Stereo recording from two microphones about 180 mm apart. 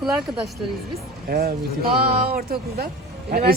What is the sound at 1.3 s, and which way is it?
Speech, 55° right (ahead or behind).